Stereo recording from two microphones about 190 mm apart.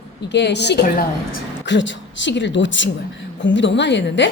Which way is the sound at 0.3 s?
65° left (ahead or behind).